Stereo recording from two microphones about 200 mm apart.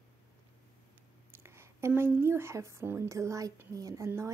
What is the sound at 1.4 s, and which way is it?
A woman's voice, 15° right (ahead or behind).